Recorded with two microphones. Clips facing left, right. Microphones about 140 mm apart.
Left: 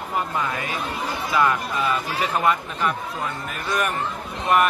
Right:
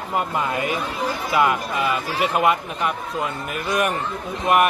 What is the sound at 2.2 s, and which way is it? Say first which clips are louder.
Speech: right 4 dB; 15° right (ahead or behind).